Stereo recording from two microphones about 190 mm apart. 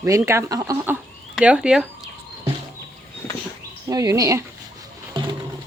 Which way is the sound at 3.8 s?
20° right (ahead or behind).